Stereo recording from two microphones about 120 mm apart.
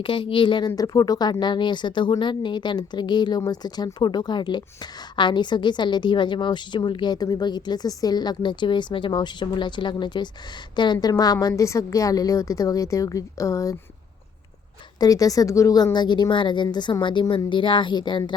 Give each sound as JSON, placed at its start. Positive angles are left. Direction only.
{"t": 0.0, "sound": "speech", "side_deg": 45}
{"t": 0.8, "sound": "a woman's voice", "side_deg": 30}
{"t": 14.9, "sound": "a woman's voice", "side_deg": 30}